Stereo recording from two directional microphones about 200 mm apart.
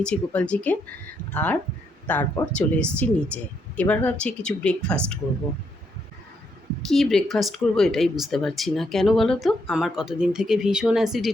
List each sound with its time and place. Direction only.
0.0 s speech: 5° left (ahead or behind)
6.8 s speech: centre (ahead or behind)